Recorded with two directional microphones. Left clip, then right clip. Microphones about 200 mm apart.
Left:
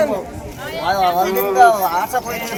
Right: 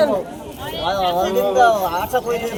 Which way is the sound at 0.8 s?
15° right (ahead or behind).